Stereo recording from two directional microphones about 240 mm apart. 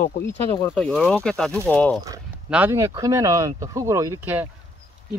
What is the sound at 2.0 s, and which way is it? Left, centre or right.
Speech, centre.